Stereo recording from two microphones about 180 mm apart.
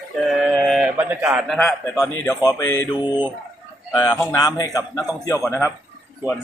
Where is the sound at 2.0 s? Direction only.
20° left (ahead or behind).